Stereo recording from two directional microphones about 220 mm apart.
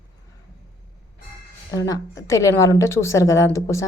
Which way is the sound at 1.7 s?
15° left (ahead or behind).